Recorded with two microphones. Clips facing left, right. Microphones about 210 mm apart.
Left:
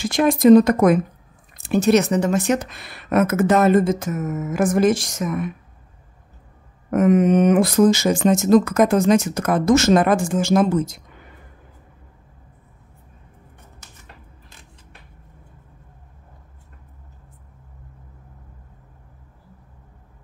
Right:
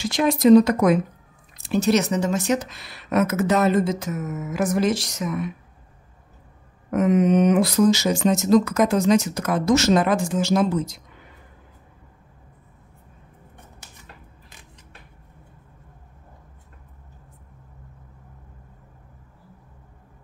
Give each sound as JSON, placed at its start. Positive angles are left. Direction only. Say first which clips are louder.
{"t": 0.0, "sound": "speech", "louder": "left 3 dB", "side_deg": 50}
{"t": 6.9, "sound": "speech", "louder": "left 3 dB", "side_deg": 50}